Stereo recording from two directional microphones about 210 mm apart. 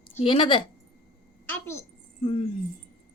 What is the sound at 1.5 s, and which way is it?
Speech, 10° left (ahead or behind).